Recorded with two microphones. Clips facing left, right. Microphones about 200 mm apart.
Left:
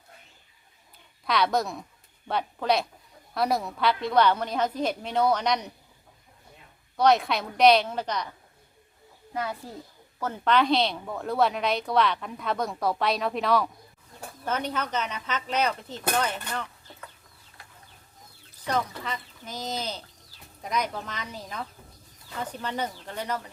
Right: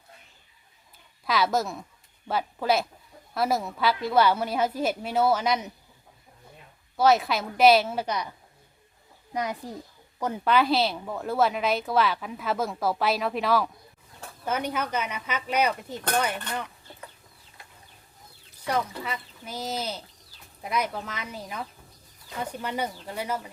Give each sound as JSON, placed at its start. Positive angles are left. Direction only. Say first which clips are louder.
{"t": 1.2, "sound": "a woman's voice", "louder": "even", "side_deg": -5}
{"t": 6.9, "sound": "a woman's voice", "louder": "even", "side_deg": -5}
{"t": 9.3, "sound": "a woman's voice", "louder": "right 2 dB", "side_deg": -15}
{"t": 16.5, "sound": "chicken", "louder": "right 1 dB", "side_deg": -15}
{"t": 18.6, "sound": "speech", "louder": "right 1 dB", "side_deg": -10}